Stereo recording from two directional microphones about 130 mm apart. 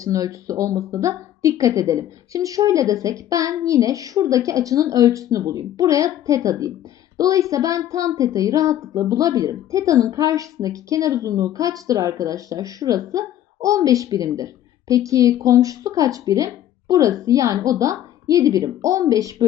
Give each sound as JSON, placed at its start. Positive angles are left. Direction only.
{"t": 0.0, "sound": "a woman's voice", "side_deg": -25}